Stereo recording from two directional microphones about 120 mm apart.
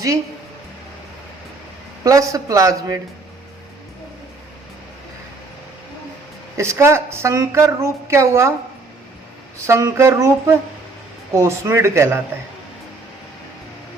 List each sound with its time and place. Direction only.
2.0 s a woman's voice: 30° right (ahead or behind)
6.6 s a woman's voice: 20° right (ahead or behind)
9.6 s a woman's voice: 25° right (ahead or behind)